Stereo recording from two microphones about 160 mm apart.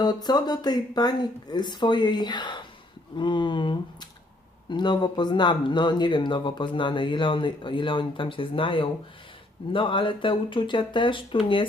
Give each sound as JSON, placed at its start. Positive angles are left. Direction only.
{"t": 0.0, "sound": "speech", "side_deg": 25}